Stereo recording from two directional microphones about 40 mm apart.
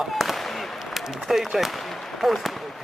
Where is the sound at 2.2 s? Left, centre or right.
Centre.